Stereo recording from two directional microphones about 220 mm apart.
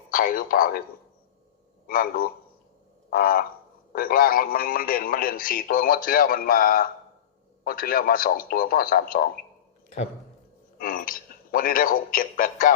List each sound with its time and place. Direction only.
0.1 s a man's voice: 40° left (ahead or behind)
1.9 s a man's voice: 40° left (ahead or behind)
10.8 s a man's voice: 40° left (ahead or behind)